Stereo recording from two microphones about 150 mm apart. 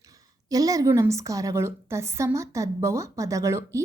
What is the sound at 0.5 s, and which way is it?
A woman's voice, 25° right (ahead or behind).